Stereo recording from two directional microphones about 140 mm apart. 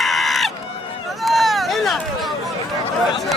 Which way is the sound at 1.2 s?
Centre (ahead or behind).